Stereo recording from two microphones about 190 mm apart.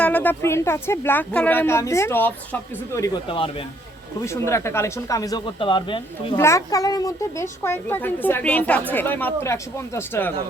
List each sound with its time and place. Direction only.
0.0 s speech: 10° left (ahead or behind)
3.2 s a child's voice: 25° left (ahead or behind)
4.2 s speech: 15° left (ahead or behind)
6.3 s a child's voice: 15° left (ahead or behind)